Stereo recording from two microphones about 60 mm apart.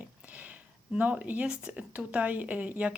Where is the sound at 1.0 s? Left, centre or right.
Right.